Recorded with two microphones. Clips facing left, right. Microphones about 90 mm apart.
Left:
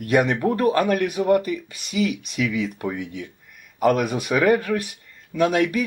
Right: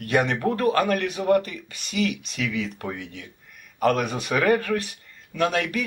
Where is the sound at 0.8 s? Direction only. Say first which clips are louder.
Left 3 dB; 10° left (ahead or behind).